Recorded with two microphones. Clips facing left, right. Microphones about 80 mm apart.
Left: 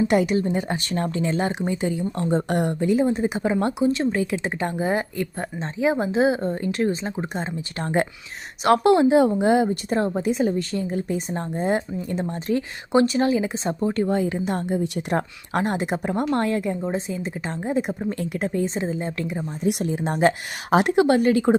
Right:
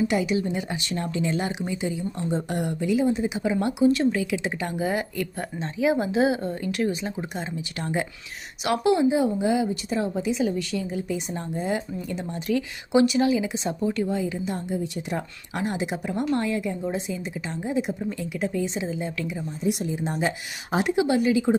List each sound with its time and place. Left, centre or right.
0.1 s a woman's voice: left
0.4 s speech: left
8.6 s a woman's voice: left
14.1 s a woman's voice: left
19.6 s a woman's voice: left